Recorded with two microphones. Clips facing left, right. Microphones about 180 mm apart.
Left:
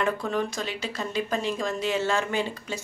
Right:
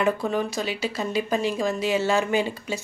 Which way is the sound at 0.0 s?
5° right (ahead or behind).